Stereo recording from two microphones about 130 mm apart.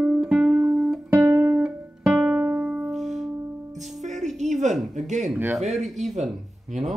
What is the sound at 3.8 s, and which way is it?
Music, 65° right (ahead or behind).